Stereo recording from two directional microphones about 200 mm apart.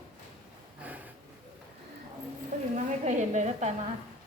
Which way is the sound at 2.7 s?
35° right (ahead or behind).